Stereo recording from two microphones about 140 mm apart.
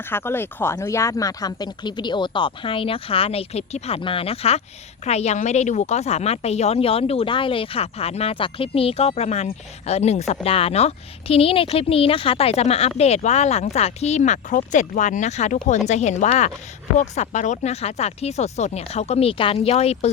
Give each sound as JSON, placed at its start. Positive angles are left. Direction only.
{"t": 0.0, "sound": "speech", "side_deg": 15}